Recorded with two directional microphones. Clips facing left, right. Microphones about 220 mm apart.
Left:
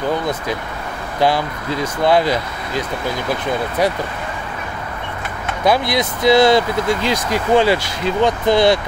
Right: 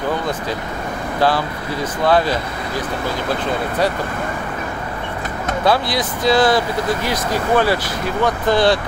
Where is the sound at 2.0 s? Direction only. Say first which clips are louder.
Left 1 dB; 15° left (ahead or behind).